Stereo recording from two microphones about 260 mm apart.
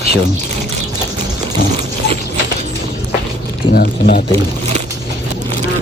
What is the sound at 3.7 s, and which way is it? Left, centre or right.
Speech, left.